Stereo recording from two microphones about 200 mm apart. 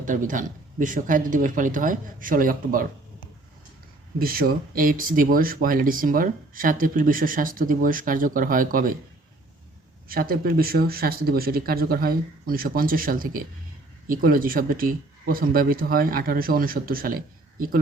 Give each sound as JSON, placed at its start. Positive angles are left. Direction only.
{"t": 0.0, "sound": "speech", "side_deg": -40}
{"t": 4.2, "sound": "speech", "side_deg": -45}
{"t": 10.1, "sound": "speech", "side_deg": -45}